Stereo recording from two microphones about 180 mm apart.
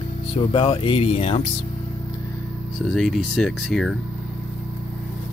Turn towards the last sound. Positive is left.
turn(degrees=0)  # may be behind; listen again after turning